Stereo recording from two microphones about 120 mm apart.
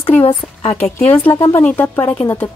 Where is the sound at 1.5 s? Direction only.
10° left (ahead or behind).